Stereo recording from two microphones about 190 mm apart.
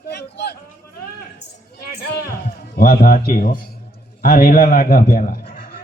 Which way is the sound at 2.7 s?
50° left (ahead or behind).